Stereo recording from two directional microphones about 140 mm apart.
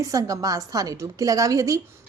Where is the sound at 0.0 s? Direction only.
25° right (ahead or behind).